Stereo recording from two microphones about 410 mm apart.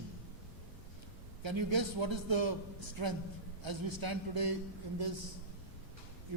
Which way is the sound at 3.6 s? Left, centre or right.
Right.